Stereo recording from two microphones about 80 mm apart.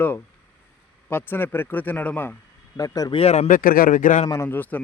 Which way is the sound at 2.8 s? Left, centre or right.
Left.